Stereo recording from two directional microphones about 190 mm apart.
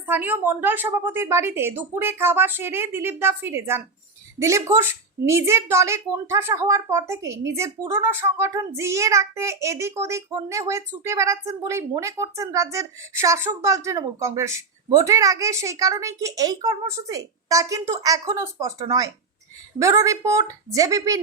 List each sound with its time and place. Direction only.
0.0 s a woman's voice: 10° right (ahead or behind)